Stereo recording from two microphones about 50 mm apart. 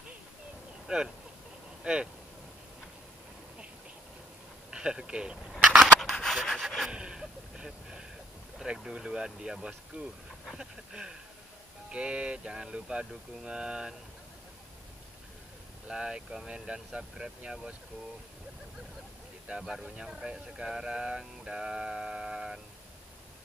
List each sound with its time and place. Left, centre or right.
0.8 s speech: centre
4.6 s speech: centre
5.7 s rub: centre
6.9 s a sound: centre
8.5 s speech: centre
15.9 s speech: centre
19.4 s speech: centre